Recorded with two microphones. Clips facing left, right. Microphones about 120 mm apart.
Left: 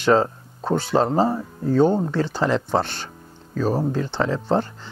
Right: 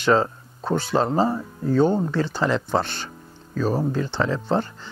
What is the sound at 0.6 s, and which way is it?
Speech, 30° left (ahead or behind).